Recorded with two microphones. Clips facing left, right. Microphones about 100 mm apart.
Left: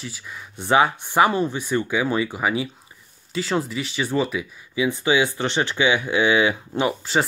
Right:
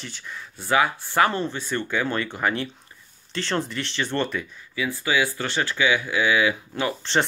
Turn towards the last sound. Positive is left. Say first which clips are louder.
# left 3 dB
turn(degrees=20)  # may be behind; listen again after turning